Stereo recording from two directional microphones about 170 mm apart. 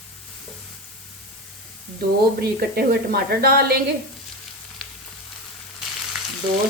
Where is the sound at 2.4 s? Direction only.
65° right (ahead or behind).